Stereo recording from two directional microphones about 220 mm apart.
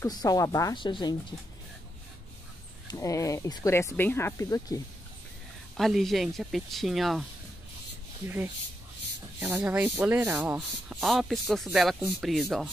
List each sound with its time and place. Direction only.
0.0 s speech: 15° left (ahead or behind)
2.9 s speech: 15° left (ahead or behind)
5.8 s speech: centre (ahead or behind)
9.4 s speech: 5° right (ahead or behind)